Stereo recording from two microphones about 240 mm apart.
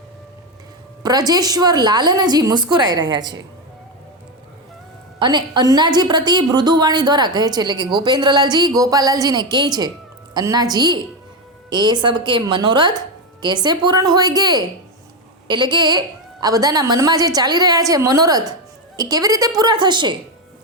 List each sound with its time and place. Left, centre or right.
1.0 s a woman's voice: centre
5.2 s a woman's voice: centre